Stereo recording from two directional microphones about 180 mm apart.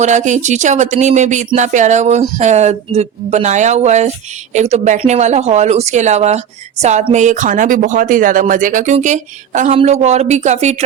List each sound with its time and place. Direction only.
0.0 s speech: 40° right (ahead or behind)